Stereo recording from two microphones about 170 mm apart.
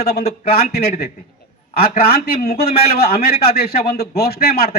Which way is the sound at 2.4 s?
65° left (ahead or behind).